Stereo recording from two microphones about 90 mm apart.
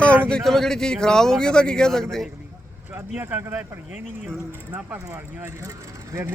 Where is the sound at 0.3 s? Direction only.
5° left (ahead or behind).